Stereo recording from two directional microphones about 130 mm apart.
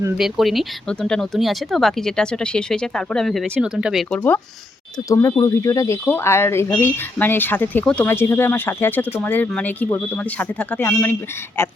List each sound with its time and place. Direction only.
0.2 s speech: centre (ahead or behind)
4.1 s speech: 15° left (ahead or behind)
5.0 s speech: 25° left (ahead or behind)